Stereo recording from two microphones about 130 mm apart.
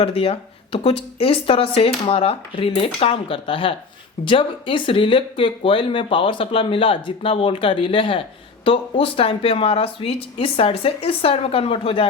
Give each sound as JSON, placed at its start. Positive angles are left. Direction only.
{"t": 0.0, "sound": "speech", "side_deg": 50}